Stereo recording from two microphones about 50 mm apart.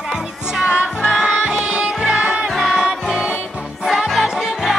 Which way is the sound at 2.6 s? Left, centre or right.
Centre.